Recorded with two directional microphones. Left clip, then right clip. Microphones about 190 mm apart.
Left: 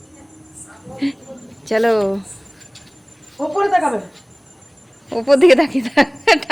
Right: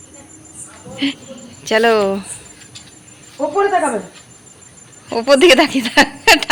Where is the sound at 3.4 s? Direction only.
25° right (ahead or behind).